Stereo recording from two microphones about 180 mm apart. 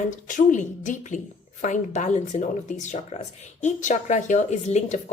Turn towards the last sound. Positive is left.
turn(degrees=40)  # may be behind; listen again after turning